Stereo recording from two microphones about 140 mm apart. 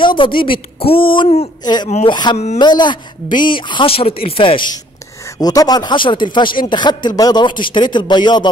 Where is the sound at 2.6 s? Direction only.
35° left (ahead or behind).